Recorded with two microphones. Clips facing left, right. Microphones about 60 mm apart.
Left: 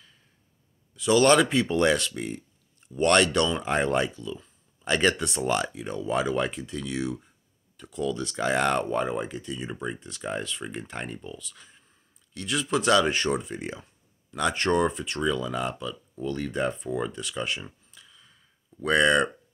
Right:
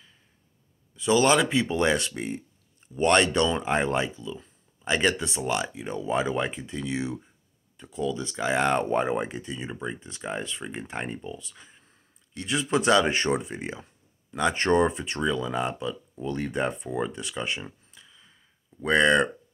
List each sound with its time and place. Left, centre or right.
0.9 s speech: centre
2.0 s speech: right
2.9 s speech: centre
5.8 s speech: centre
8.7 s speech: right
9.6 s speech: centre
17.9 s a sound: centre